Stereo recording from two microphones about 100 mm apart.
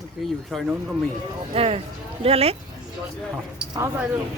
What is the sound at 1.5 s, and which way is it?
Speech, 85° right.